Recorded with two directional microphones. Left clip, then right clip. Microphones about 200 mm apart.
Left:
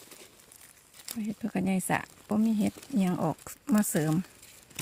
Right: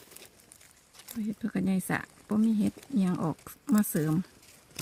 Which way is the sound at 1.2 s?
30° left (ahead or behind).